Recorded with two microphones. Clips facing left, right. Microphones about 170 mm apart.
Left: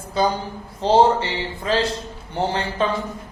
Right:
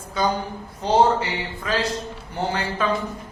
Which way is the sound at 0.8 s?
30° left (ahead or behind).